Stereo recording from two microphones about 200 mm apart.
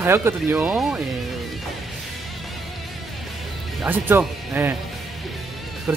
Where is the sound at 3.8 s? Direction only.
10° right (ahead or behind).